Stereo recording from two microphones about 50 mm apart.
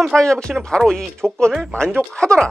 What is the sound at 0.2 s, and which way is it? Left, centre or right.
Speech, centre.